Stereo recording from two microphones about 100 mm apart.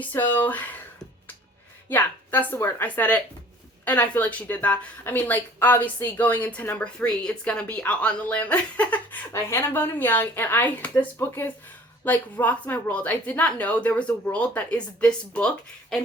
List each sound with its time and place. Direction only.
0.0 s a woman's voice: 20° left (ahead or behind)
1.9 s a woman's voice: 20° left (ahead or behind)
9.3 s a woman's voice: 25° left (ahead or behind)